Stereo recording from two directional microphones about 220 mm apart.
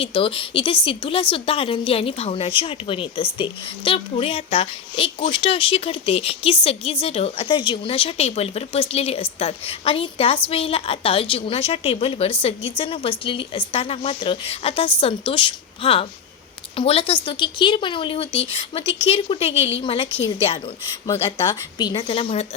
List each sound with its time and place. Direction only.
0.0 s a woman's voice: 25° left (ahead or behind)
21.8 s a woman's voice: 20° left (ahead or behind)